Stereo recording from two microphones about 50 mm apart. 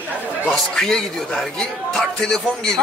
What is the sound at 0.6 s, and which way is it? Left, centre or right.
A man's voice, centre.